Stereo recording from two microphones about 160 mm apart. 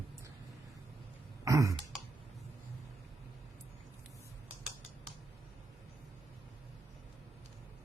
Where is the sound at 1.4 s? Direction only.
20° right (ahead or behind).